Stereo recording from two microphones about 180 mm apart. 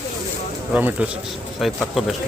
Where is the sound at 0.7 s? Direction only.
10° right (ahead or behind).